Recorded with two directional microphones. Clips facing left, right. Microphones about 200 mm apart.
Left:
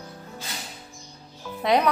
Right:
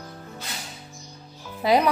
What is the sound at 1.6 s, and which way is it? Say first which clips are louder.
Speech: right 1 dB; 5° right (ahead or behind).